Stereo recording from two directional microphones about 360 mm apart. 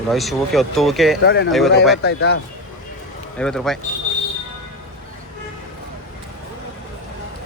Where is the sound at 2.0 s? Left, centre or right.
Left.